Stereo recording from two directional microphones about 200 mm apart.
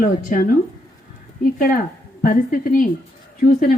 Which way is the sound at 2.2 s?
45° left (ahead or behind).